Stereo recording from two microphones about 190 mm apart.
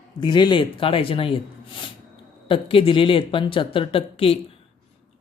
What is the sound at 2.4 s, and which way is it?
Speech, 25° left (ahead or behind).